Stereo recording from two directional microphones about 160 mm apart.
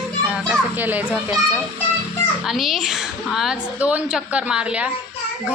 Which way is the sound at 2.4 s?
Centre (ahead or behind).